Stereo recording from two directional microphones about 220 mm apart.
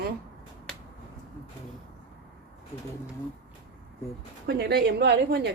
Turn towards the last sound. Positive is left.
turn(degrees=-50)  # may be behind; listen again after turning